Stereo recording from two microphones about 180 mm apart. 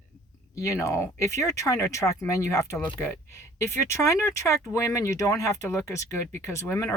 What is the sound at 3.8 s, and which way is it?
Speech, 15° left (ahead or behind).